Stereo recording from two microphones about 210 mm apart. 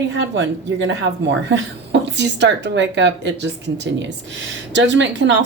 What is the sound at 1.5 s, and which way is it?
Speech, 55° right (ahead or behind).